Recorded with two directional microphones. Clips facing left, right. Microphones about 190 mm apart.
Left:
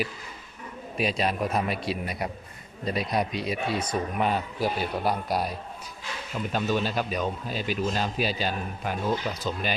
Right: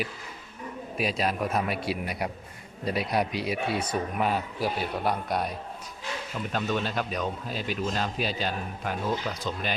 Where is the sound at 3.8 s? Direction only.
5° right (ahead or behind).